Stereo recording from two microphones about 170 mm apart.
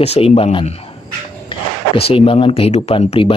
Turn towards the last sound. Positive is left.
turn(degrees=35)  # may be behind; listen again after turning